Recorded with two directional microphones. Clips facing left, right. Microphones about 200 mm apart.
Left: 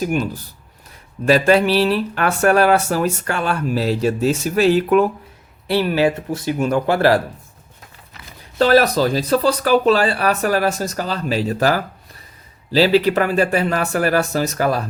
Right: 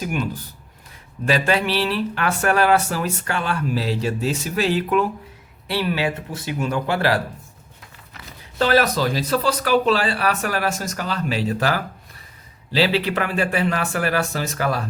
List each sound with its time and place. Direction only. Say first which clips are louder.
1.2 s speech: left 6 dB; 45° left (ahead or behind)
8.5 s speech: left 4 dB; 40° left (ahead or behind)